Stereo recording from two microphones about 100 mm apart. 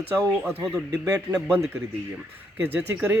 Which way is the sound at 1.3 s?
30° right (ahead or behind).